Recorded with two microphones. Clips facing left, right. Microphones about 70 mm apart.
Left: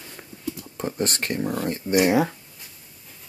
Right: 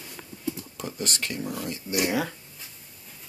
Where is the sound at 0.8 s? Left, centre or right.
Left.